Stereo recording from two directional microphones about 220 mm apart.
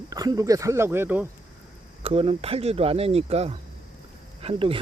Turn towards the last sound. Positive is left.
turn(degrees=-25)  # may be behind; listen again after turning